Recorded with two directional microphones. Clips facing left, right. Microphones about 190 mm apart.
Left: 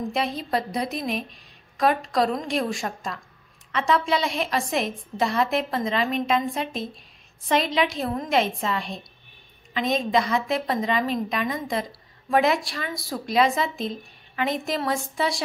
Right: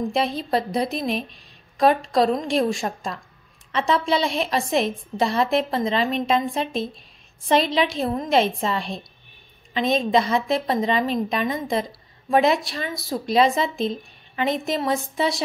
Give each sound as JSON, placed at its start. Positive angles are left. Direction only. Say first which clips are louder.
{"t": 0.1, "sound": "a woman's voice", "louder": "right 3 dB", "side_deg": -30}